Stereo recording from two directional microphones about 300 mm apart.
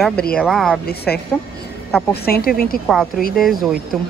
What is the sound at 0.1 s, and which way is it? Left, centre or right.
Speech, left.